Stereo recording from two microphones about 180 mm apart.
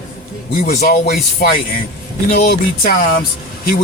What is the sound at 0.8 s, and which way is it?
Speech, 55° left (ahead or behind).